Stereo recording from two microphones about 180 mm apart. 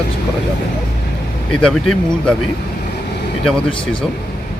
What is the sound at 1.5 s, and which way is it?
Speech, 5° left (ahead or behind).